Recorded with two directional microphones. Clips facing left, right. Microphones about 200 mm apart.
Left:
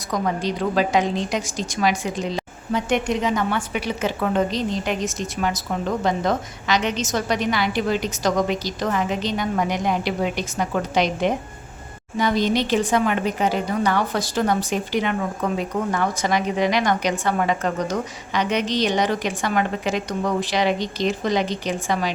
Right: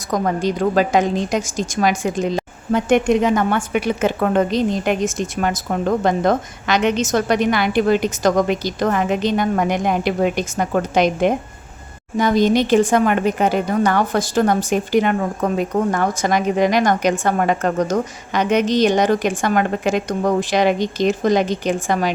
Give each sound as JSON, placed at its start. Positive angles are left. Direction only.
{"t": 0.1, "sound": "a woman's voice", "side_deg": -50}